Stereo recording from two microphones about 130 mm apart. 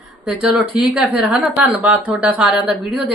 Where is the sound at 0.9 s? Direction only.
5° right (ahead or behind).